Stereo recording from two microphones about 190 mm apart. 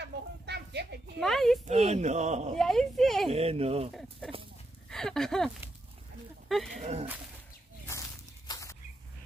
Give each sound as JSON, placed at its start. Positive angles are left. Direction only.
{"t": 0.0, "sound": "a sound", "side_deg": -60}
{"t": 1.2, "sound": "speech", "side_deg": 0}
{"t": 1.7, "sound": "a man's voice", "side_deg": -35}
{"t": 2.5, "sound": "speech", "side_deg": 0}
{"t": 3.3, "sound": "a man's voice", "side_deg": -30}
{"t": 4.8, "sound": "speech", "side_deg": 5}
{"t": 6.5, "sound": "speech", "side_deg": 0}
{"t": 6.8, "sound": "a man's voice", "side_deg": -35}
{"t": 7.8, "sound": "walk", "side_deg": 15}